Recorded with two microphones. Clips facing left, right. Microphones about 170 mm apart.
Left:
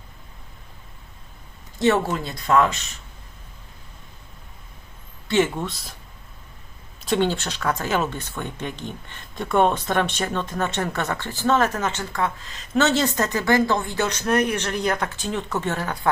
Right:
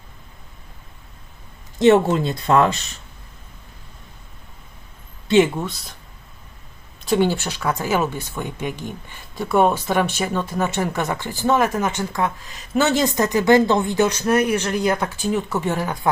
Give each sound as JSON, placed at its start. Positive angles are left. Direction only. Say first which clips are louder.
{"t": 1.8, "sound": "speech", "louder": "right 6 dB", "side_deg": -20}
{"t": 5.3, "sound": "speech", "louder": "right 5 dB", "side_deg": -15}
{"t": 5.6, "sound": "speech", "louder": "right 1 dB", "side_deg": 0}
{"t": 7.0, "sound": "speech", "louder": "right 3 dB", "side_deg": -5}